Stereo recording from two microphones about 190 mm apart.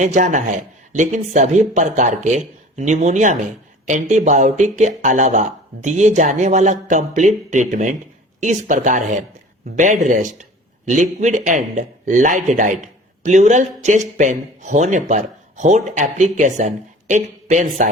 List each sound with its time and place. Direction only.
0.0 s a man's voice: 40° right (ahead or behind)